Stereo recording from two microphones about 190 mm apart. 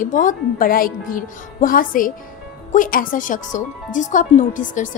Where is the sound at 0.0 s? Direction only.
45° left (ahead or behind).